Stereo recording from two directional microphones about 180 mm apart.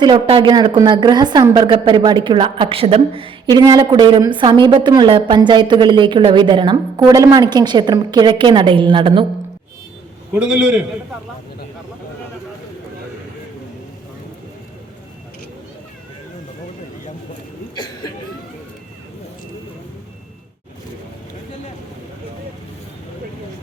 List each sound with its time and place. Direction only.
0.0 s a woman's voice: 25° right (ahead or behind)
10.3 s a man's voice: 5° right (ahead or behind)